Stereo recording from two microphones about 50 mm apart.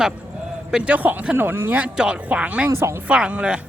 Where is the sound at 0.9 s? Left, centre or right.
Right.